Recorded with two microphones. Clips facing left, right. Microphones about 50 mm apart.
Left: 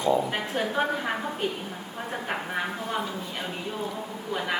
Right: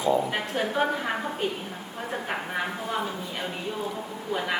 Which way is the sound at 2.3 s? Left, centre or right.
Centre.